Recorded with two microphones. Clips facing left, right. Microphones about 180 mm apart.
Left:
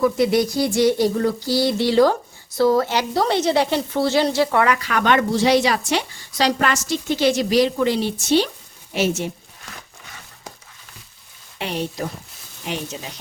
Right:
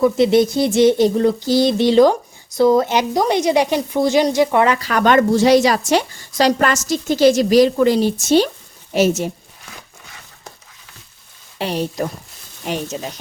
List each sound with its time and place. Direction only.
0.0 s a sound: 25° right (ahead or behind)
2.6 s a woman's voice: 20° right (ahead or behind); by 9.3 s 40° right (ahead or behind)
11.5 s a woman's voice: 40° right (ahead or behind)